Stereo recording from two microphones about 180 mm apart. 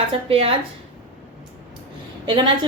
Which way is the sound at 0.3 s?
30° right (ahead or behind).